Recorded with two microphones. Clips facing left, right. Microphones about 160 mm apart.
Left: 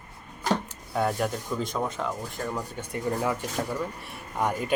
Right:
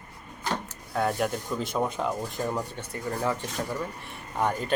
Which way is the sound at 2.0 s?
20° right (ahead or behind).